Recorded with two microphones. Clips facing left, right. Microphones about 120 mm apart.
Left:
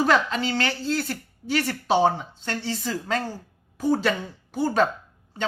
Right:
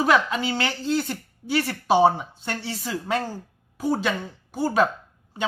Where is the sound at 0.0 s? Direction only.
5° right (ahead or behind).